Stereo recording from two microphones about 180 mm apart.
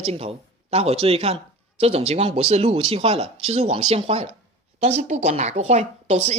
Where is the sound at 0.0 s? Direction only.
35° right (ahead or behind).